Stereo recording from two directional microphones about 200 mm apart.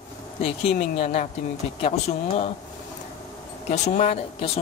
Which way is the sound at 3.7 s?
35° left (ahead or behind).